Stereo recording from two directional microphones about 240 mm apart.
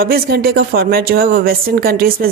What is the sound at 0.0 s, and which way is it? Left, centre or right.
A woman's voice, right.